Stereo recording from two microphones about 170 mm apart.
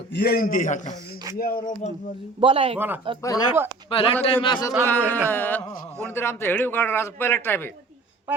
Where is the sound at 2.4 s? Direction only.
30° right (ahead or behind).